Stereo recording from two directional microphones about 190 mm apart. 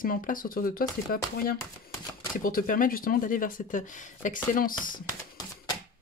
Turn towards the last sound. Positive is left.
turn(degrees=15)  # may be behind; listen again after turning